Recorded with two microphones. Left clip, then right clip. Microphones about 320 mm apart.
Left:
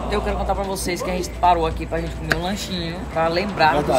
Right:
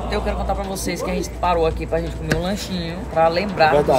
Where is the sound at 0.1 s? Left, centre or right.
Centre.